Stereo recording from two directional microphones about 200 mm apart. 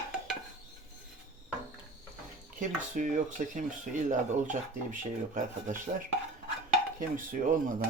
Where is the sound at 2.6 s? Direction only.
40° right (ahead or behind).